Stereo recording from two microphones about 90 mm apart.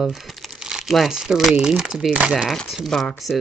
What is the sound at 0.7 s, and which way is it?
Speech, 5° right (ahead or behind).